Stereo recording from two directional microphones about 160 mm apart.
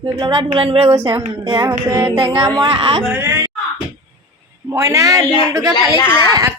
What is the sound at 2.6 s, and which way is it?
Speech, 35° right (ahead or behind).